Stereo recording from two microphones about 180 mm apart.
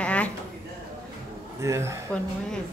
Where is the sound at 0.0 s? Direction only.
5° left (ahead or behind).